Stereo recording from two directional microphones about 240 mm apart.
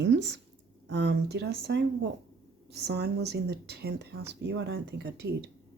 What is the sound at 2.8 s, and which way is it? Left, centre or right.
Speech, right.